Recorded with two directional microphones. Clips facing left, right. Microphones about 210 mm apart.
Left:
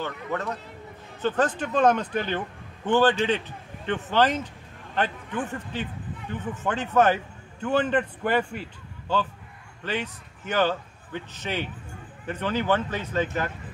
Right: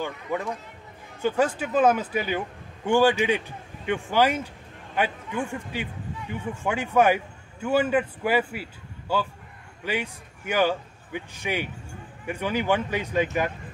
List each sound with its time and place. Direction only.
0.0 s a man's voice: 10° right (ahead or behind)